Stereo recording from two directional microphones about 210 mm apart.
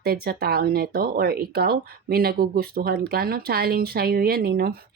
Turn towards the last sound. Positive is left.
turn(degrees=-45)  # may be behind; listen again after turning